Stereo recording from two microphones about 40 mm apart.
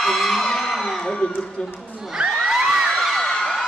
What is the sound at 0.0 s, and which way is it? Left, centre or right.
Speech, centre.